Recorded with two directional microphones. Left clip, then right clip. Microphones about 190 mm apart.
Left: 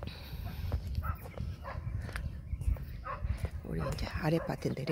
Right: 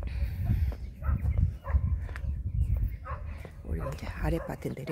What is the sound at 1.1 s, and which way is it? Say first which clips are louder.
Dog: right 1 dB; 25° right (ahead or behind).